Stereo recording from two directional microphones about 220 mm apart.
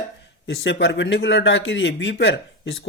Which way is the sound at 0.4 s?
50° left (ahead or behind).